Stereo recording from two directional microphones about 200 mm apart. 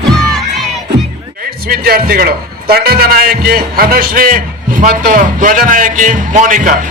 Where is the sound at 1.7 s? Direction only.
50° right (ahead or behind).